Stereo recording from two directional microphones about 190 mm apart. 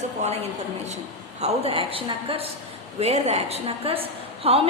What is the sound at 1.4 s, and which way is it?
A woman's voice, 30° right (ahead or behind).